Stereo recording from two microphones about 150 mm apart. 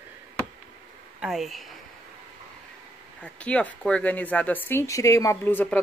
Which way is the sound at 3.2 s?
10° left (ahead or behind).